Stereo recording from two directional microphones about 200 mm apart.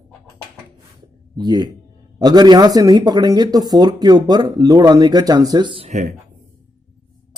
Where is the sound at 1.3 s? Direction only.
20° right (ahead or behind); by 6.1 s 35° right (ahead or behind).